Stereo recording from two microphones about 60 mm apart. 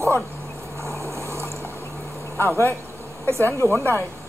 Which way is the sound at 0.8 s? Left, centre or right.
Right.